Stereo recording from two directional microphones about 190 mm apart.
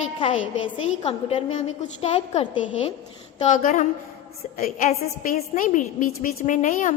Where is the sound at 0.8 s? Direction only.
30° left (ahead or behind).